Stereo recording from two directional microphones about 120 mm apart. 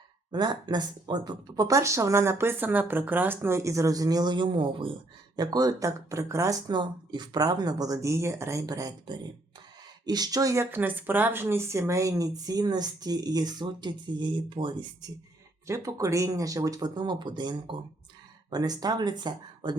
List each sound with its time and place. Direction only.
0.3 s speech: 35° right (ahead or behind)
5.4 s speech: 35° right (ahead or behind)
15.6 s speech: 25° right (ahead or behind)